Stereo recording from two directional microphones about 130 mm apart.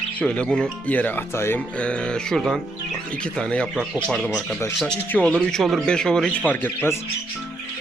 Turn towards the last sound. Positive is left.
turn(degrees=15)  # may be behind; listen again after turning